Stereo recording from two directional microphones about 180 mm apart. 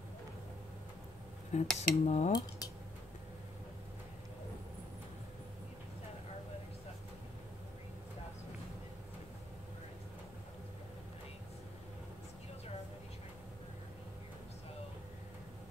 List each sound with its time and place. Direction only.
1.5 s cutlery: 40° left (ahead or behind)